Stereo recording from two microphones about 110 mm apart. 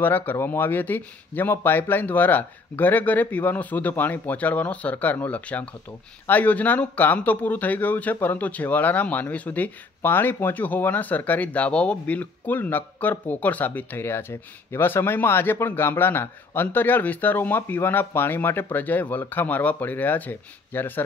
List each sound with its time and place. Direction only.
0.0 s speech: 15° left (ahead or behind)